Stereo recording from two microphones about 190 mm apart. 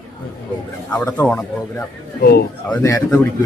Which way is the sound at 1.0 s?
10° left (ahead or behind).